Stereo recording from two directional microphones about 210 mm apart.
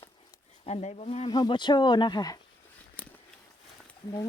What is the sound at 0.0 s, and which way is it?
Speech, 25° left (ahead or behind).